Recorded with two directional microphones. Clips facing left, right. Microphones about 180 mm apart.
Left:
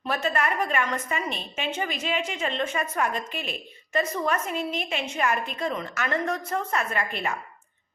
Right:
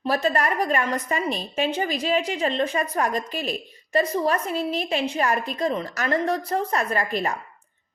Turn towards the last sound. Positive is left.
turn(degrees=-35)  # may be behind; listen again after turning